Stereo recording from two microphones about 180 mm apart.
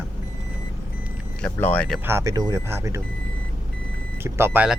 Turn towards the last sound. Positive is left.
turn(degrees=-10)  # may be behind; listen again after turning